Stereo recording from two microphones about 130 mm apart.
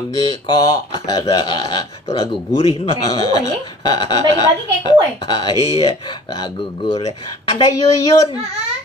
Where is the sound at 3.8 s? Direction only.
35° left (ahead or behind).